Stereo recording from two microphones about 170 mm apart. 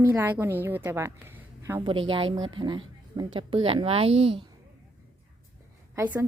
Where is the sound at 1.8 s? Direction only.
30° right (ahead or behind).